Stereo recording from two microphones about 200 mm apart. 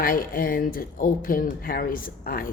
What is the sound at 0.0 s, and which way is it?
A woman's voice, 45° left (ahead or behind).